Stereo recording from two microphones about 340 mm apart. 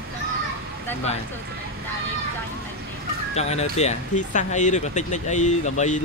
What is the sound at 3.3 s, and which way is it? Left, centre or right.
Speech, centre.